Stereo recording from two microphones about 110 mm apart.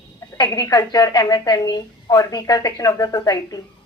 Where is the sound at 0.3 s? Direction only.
35° left (ahead or behind).